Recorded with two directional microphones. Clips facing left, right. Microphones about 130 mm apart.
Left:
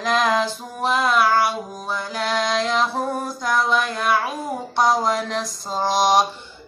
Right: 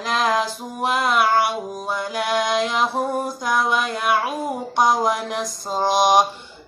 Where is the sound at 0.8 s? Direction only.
15° right (ahead or behind).